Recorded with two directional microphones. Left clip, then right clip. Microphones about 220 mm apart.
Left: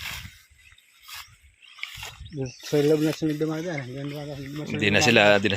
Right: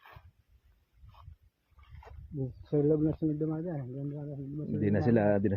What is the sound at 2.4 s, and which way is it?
Speech, 55° left (ahead or behind).